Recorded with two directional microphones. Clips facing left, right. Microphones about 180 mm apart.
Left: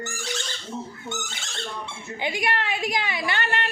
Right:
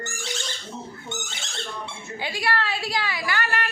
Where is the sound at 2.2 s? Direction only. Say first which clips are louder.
Even; 20° left (ahead or behind).